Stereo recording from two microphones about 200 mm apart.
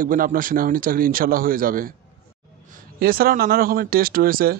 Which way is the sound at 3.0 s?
50° right (ahead or behind).